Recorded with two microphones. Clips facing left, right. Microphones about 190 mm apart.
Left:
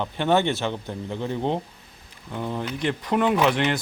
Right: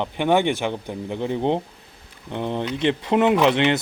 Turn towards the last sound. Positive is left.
turn(degrees=-20)  # may be behind; listen again after turning